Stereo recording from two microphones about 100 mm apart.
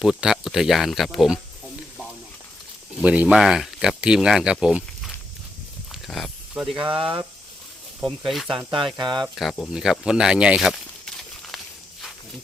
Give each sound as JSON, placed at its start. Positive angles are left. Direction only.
{"t": 0.0, "sound": "speech", "side_deg": -5}
{"t": 3.0, "sound": "speech", "side_deg": -10}
{"t": 4.6, "sound": "a sound", "side_deg": -5}
{"t": 6.7, "sound": "speech", "side_deg": -60}
{"t": 8.0, "sound": "speech", "side_deg": 0}
{"t": 9.0, "sound": "speech", "side_deg": -50}
{"t": 9.2, "sound": "speech", "side_deg": 0}